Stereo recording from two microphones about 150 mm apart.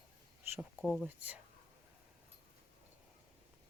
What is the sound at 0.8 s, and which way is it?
Speech, 5° left (ahead or behind).